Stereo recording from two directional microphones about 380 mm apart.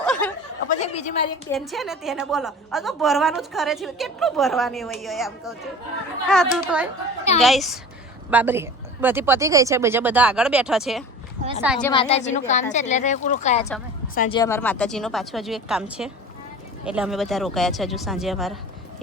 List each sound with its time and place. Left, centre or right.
0.0 s a sound: centre
0.7 s a woman's voice: centre
1.5 s a woman's voice: centre
11.9 s a woman's voice: centre